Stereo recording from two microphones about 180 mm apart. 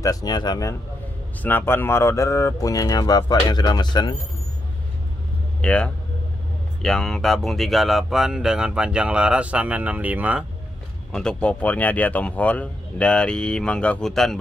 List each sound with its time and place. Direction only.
0.0 s speech: 20° left (ahead or behind)
5.6 s a man's voice: 5° left (ahead or behind)
11.1 s speech: 5° left (ahead or behind)